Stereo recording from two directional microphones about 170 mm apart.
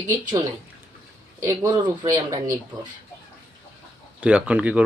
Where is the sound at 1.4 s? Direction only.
20° right (ahead or behind).